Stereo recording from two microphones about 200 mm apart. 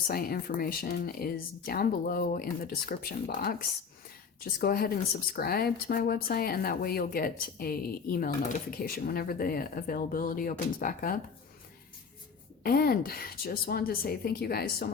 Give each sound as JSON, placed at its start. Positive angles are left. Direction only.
{"t": 0.1, "sound": "speech", "side_deg": 50}
{"t": 12.6, "sound": "speech", "side_deg": 50}